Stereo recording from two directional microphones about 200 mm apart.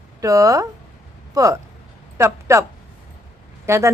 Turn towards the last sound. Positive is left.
turn(degrees=-15)  # may be behind; listen again after turning